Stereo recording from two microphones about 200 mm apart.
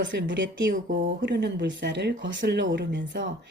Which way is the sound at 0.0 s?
60° right (ahead or behind).